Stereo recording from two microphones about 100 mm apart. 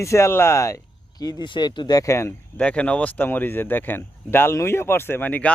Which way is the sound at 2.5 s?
15° left (ahead or behind).